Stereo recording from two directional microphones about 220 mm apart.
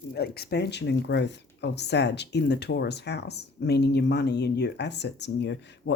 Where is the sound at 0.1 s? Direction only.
45° left (ahead or behind).